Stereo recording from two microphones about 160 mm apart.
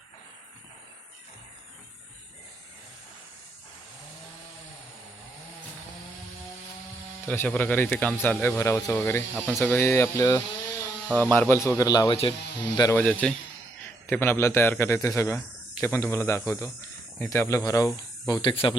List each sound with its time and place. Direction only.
7.3 s speech: 10° left (ahead or behind)
13.0 s speech: 10° left (ahead or behind); by 18.5 s 25° left (ahead or behind)
18.5 s speech: 35° left (ahead or behind)